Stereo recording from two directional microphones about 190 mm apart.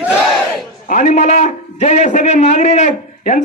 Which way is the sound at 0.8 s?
40° left (ahead or behind).